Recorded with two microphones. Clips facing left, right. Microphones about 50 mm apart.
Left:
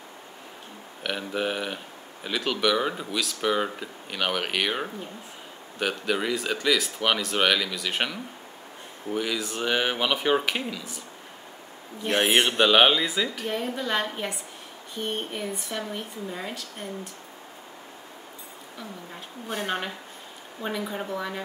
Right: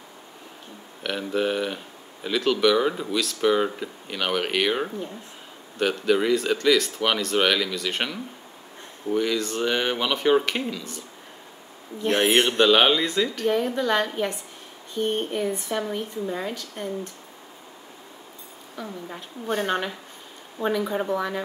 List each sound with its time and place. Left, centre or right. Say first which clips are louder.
1.0 s speech: right 3 dB; centre
18.8 s speech: right 5 dB; centre
19.5 s speech: right 4 dB; centre